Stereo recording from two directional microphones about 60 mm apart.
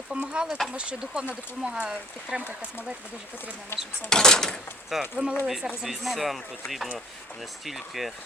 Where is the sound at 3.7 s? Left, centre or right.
Left.